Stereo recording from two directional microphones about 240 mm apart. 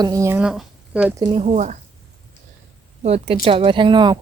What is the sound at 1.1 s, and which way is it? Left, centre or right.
Speech, centre.